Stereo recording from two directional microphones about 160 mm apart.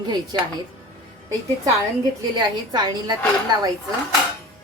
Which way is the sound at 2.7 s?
25° right (ahead or behind).